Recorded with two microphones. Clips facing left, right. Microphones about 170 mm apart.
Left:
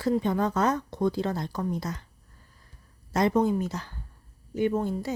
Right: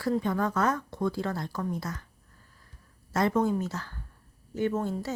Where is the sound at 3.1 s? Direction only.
15° left (ahead or behind).